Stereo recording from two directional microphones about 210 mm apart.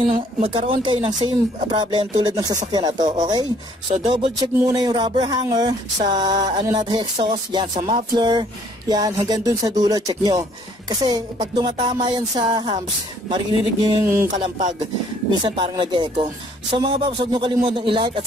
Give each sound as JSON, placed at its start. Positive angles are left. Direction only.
{"t": 0.0, "sound": "music", "side_deg": -25}
{"t": 14.3, "sound": "speech", "side_deg": -35}
{"t": 15.4, "sound": "music", "side_deg": -20}